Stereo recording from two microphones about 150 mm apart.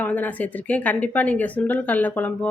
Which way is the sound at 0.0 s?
10° left (ahead or behind).